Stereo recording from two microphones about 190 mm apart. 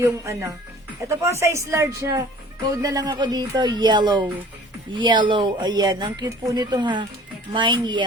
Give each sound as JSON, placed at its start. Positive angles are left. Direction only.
{"t": 0.0, "sound": "speech", "side_deg": -15}